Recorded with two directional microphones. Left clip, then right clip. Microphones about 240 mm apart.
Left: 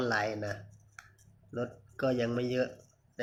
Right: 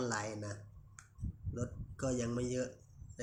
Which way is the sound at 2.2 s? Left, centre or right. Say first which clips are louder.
Left 7 dB; centre.